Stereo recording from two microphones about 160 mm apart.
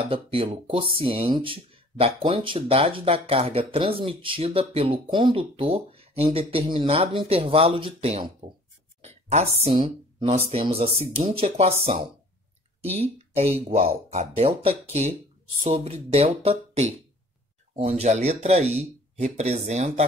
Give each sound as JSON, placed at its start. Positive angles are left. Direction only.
{"t": 0.1, "sound": "speech", "side_deg": -35}